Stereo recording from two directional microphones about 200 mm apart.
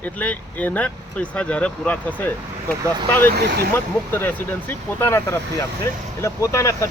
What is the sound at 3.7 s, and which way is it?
Speech, 10° left (ahead or behind).